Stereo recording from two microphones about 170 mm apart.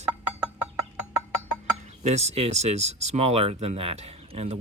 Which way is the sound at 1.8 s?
40° right (ahead or behind).